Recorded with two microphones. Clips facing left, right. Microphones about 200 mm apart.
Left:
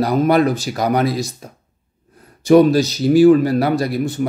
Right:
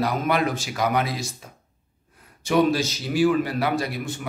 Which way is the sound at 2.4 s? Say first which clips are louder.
Left 9 dB; 40° left (ahead or behind).